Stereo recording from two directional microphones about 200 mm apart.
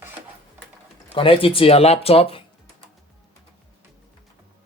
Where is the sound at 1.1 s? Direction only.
25° left (ahead or behind).